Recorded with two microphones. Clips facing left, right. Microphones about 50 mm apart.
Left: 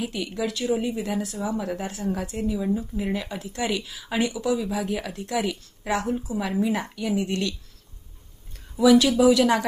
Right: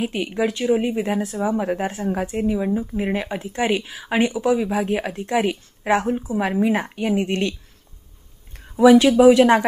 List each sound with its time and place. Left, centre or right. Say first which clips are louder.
0.0 s speech: right 6 dB; right
8.5 s a woman's voice: right 5 dB; right